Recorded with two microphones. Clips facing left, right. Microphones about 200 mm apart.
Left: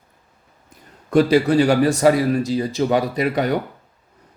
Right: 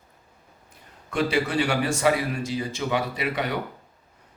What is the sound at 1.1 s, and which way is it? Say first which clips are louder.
A man's voice: left 9 dB; 40° left (ahead or behind).